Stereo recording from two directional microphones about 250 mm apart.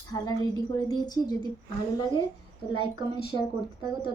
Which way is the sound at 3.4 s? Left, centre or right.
Left.